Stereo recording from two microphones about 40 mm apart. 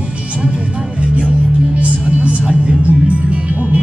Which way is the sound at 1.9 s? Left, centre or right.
Right.